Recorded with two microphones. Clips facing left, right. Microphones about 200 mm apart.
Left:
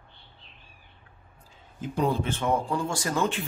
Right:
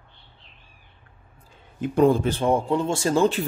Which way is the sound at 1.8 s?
55° right (ahead or behind).